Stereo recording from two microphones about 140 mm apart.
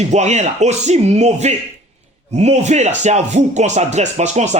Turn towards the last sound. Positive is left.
turn(degrees=-55)  # may be behind; listen again after turning